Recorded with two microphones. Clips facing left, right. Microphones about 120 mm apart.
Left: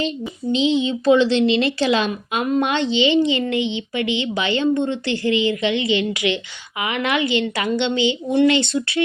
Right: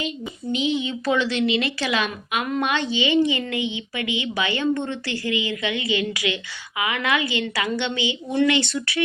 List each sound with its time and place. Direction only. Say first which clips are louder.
0.5 s a woman's voice: left 5 dB; 25° left (ahead or behind)